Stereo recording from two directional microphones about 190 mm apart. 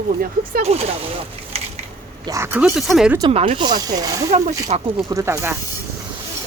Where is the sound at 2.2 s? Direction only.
15° right (ahead or behind).